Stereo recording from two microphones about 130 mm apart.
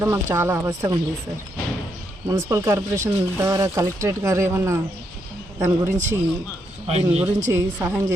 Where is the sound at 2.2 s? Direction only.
20° right (ahead or behind).